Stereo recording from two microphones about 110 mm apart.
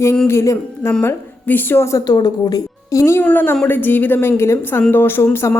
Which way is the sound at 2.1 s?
35° left (ahead or behind).